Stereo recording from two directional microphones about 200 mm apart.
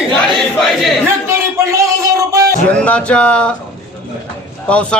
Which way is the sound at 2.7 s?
5° left (ahead or behind).